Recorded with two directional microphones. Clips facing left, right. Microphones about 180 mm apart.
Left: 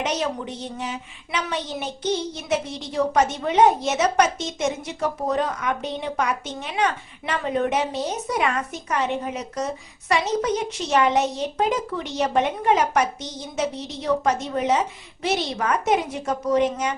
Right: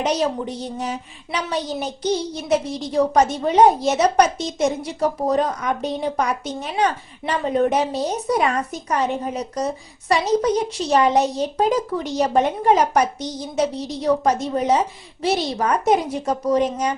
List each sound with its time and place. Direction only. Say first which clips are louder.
0.0 s speech: right 4 dB; 35° right (ahead or behind)